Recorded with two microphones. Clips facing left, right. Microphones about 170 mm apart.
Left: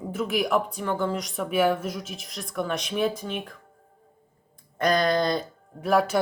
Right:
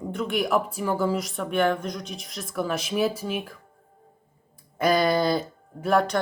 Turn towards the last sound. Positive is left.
turn(degrees=5)  # may be behind; listen again after turning